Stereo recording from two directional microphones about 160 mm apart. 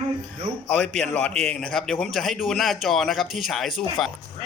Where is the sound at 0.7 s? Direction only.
5° left (ahead or behind).